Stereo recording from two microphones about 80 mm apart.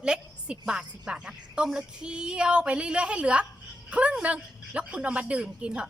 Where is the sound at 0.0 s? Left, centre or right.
Centre.